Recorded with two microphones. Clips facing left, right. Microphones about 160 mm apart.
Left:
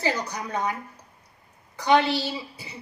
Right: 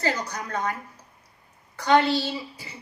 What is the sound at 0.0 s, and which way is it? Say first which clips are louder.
A woman's voice: left 1 dB; 15° left (ahead or behind).